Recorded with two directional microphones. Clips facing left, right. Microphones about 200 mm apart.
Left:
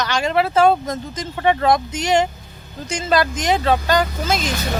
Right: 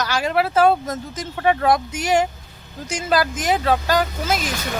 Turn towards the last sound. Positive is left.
turn(degrees=-10)  # may be behind; listen again after turning